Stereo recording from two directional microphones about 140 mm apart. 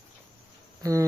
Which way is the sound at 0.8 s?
25° right (ahead or behind).